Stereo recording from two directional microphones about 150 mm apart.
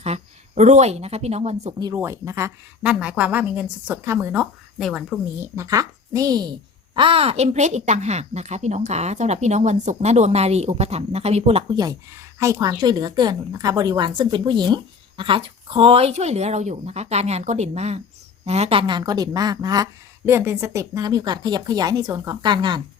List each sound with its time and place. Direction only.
0.0 s speech: 45° right (ahead or behind)
1.8 s a woman's voice: 20° right (ahead or behind)
2.8 s a woman's voice: 5° right (ahead or behind)
4.8 s speech: centre (ahead or behind)
5.4 s a woman's voice: 20° right (ahead or behind); by 11.6 s 45° right (ahead or behind)
11.7 s a woman's voice: 25° right (ahead or behind)